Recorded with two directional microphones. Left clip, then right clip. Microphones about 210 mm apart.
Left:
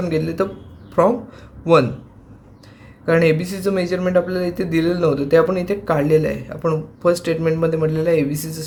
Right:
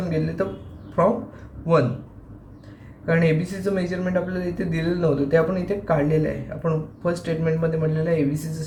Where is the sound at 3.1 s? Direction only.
55° left (ahead or behind).